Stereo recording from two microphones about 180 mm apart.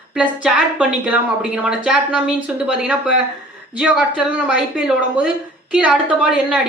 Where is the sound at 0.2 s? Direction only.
5° right (ahead or behind).